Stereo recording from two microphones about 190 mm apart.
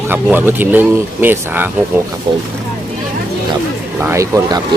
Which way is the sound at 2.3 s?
25° right (ahead or behind).